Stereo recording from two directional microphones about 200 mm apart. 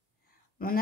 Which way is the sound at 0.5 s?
45° left (ahead or behind).